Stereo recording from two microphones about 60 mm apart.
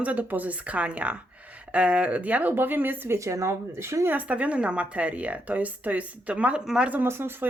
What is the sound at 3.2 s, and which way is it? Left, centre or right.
Speech, right.